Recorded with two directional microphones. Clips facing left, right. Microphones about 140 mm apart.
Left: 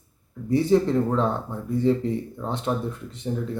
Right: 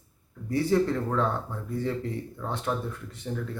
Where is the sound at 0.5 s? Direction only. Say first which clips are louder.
Left 5 dB; 20° left (ahead or behind).